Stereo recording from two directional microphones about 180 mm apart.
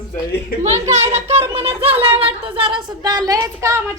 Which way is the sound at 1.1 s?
35° right (ahead or behind).